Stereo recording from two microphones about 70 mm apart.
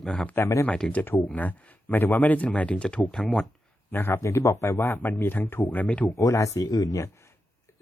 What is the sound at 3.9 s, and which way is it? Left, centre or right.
Speech, left.